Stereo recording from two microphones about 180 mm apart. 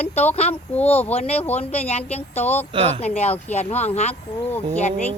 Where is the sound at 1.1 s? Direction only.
35° left (ahead or behind).